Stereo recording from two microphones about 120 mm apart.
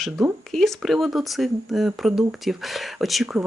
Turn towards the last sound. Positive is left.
turn(degrees=0)  # may be behind; listen again after turning